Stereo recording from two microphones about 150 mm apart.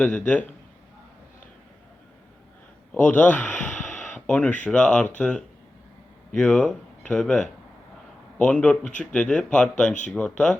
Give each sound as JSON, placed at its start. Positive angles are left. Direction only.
{"t": 0.0, "sound": "speech", "side_deg": 5}
{"t": 2.9, "sound": "a sound", "side_deg": 10}
{"t": 4.6, "sound": "speech", "side_deg": 5}
{"t": 8.4, "sound": "speech", "side_deg": 5}